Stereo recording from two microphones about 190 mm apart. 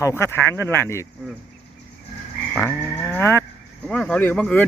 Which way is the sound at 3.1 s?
15° left (ahead or behind).